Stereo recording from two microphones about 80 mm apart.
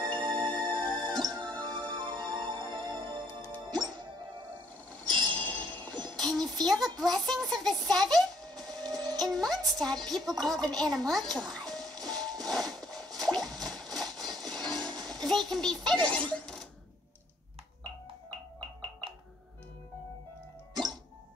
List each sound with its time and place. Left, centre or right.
0.1 s music: right
5.0 s a sound: right
5.3 s a sound: left
6.1 s a sound: centre
8.8 s music: right
9.2 s music: centre
10.0 s speech: centre
11.3 s music: centre
12.4 s squish: centre
14.2 s music: centre